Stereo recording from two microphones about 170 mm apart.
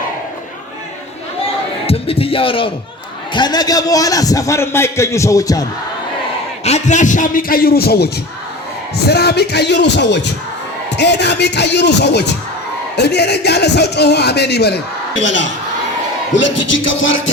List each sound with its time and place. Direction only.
1.9 s a man's voice: 35° left (ahead or behind)
6.7 s a man's voice: 40° left (ahead or behind); by 15.4 s 90° left
16.3 s music: 90° left